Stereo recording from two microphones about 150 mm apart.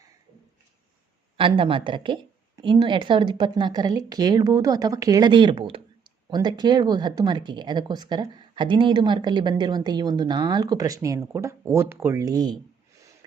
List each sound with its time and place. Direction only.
1.4 s speech: 35° right (ahead or behind)